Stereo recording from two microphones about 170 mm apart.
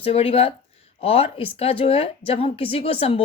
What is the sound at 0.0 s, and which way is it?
Speech, 35° left (ahead or behind).